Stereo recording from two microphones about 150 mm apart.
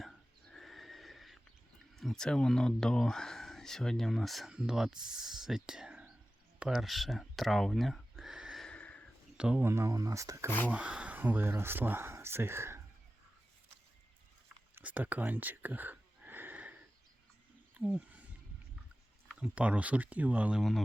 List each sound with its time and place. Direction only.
0.0 s neigh: centre (ahead or behind)
2.0 s speech: 5° left (ahead or behind)
6.6 s a sound: 5° right (ahead or behind)
9.4 s speech: 5° right (ahead or behind)
9.6 s speech: 20° right (ahead or behind)
10.7 s speech: 10° right (ahead or behind)
14.8 s a sound: 10° right (ahead or behind)
19.4 s speech: 10° right (ahead or behind)